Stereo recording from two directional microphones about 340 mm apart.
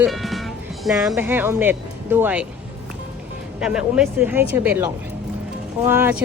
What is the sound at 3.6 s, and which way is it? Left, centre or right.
Speech, centre.